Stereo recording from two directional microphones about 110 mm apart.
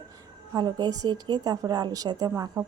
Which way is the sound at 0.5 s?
40° right (ahead or behind).